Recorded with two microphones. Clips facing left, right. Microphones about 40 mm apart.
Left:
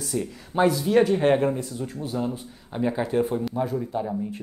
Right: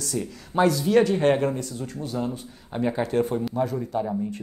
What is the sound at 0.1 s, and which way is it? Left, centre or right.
Speech, centre.